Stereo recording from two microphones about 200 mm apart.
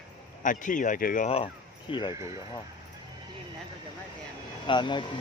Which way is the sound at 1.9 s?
20° left (ahead or behind).